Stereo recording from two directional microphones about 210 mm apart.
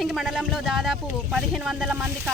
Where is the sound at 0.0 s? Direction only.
Centre (ahead or behind).